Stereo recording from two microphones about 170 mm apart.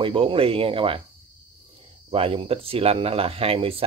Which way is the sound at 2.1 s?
35° right (ahead or behind).